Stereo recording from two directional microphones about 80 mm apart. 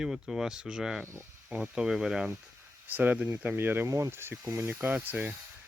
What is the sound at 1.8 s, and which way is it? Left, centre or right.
Speech, centre.